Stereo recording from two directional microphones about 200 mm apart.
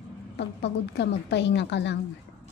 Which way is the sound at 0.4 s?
60° left (ahead or behind).